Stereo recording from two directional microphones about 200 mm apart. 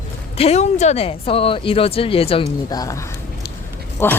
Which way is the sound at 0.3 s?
30° left (ahead or behind).